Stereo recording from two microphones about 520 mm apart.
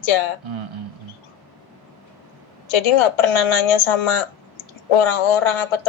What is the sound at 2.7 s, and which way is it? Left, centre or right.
Speech, left.